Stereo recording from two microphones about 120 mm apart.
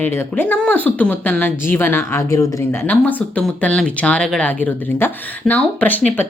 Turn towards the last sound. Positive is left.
turn(degrees=15)  # may be behind; listen again after turning